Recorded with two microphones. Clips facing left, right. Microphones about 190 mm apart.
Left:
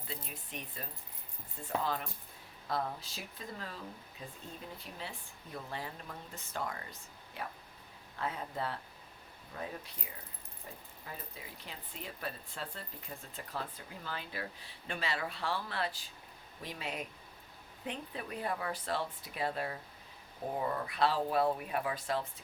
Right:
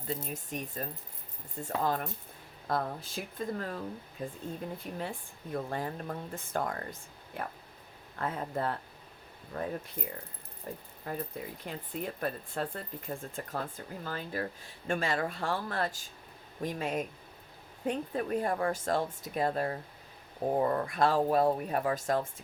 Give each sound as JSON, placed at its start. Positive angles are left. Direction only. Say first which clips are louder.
{"t": 0.1, "sound": "speech", "louder": "right 9 dB", "side_deg": -45}